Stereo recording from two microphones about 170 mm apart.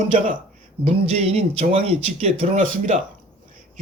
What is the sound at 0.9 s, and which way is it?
Speech, 40° right (ahead or behind).